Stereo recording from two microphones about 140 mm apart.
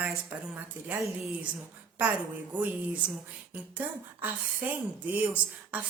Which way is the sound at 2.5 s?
10° right (ahead or behind).